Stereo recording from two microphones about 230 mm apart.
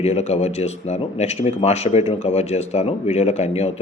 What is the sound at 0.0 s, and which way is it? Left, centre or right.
A man's voice, left.